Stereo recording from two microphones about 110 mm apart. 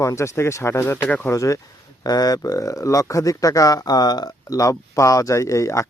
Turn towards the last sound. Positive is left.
turn(degrees=30)  # may be behind; listen again after turning